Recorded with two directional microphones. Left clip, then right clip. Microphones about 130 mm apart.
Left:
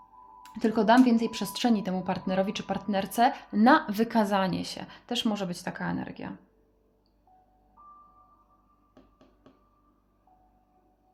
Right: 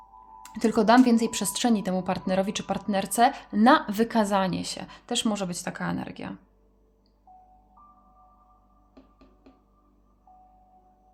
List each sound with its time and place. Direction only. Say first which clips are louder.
0.4 s speech: right 2 dB; 35° right (ahead or behind)